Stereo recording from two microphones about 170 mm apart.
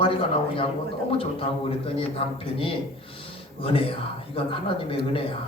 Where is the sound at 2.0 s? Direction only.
35° left (ahead or behind).